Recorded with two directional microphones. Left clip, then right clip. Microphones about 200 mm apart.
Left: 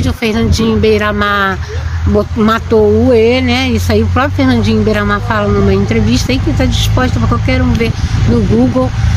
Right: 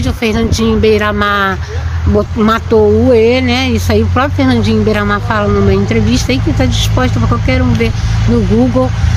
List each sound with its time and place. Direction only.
0.0 s speech: 5° left (ahead or behind)
8.4 s speech: 15° right (ahead or behind)